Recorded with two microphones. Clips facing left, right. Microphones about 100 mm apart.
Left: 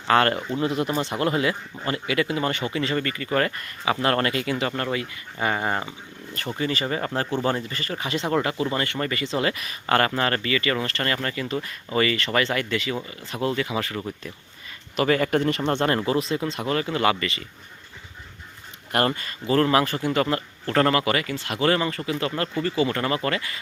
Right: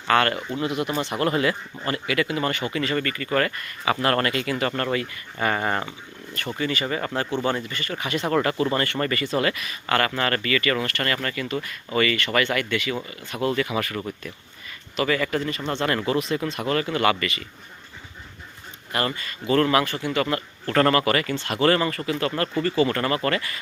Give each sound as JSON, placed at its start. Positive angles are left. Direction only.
{"t": 0.1, "sound": "speech", "side_deg": 30}
{"t": 1.2, "sound": "speech", "side_deg": 20}
{"t": 6.6, "sound": "speech", "side_deg": 30}
{"t": 8.4, "sound": "speech", "side_deg": 15}
{"t": 9.6, "sound": "speech", "side_deg": 35}
{"t": 14.9, "sound": "speech", "side_deg": 40}
{"t": 15.4, "sound": "speech", "side_deg": 65}
{"t": 16.0, "sound": "speech", "side_deg": 30}
{"t": 18.9, "sound": "speech", "side_deg": 50}
{"t": 19.5, "sound": "speech", "side_deg": 30}
{"t": 20.2, "sound": "speech", "side_deg": 25}